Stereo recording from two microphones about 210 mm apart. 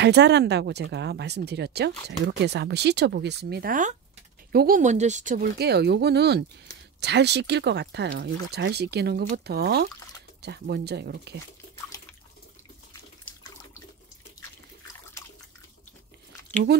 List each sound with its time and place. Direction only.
0.0 s speech: 55° right (ahead or behind)